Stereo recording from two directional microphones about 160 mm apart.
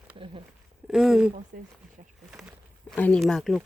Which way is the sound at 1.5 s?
60° right (ahead or behind).